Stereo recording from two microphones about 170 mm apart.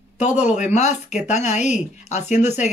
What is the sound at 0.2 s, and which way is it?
Speech, 45° left (ahead or behind).